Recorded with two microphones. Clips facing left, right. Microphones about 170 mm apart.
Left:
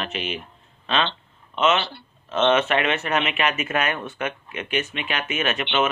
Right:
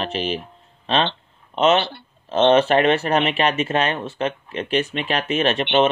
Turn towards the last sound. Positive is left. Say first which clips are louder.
# right 6 dB
turn(degrees=-35)  # may be behind; listen again after turning